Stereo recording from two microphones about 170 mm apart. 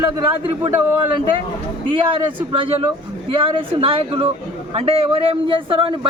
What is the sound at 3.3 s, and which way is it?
A man's voice, 30° right (ahead or behind).